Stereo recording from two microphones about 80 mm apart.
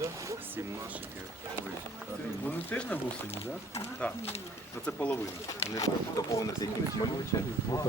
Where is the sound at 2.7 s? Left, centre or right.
Left.